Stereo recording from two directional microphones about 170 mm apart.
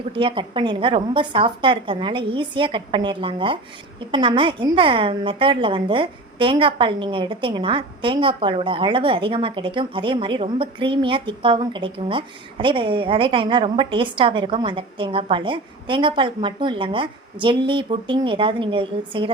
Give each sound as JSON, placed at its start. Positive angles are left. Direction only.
{"t": 0.1, "sound": "a woman's voice", "side_deg": -30}